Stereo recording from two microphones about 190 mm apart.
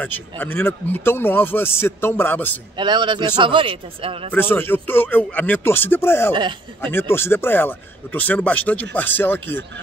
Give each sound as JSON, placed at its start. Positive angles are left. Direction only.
{"t": 0.0, "sound": "speech", "side_deg": 10}
{"t": 2.8, "sound": "a man's voice", "side_deg": -25}
{"t": 4.3, "sound": "speech", "side_deg": 10}